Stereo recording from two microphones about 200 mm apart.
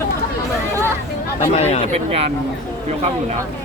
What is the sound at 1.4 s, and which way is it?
Speech, 35° left (ahead or behind).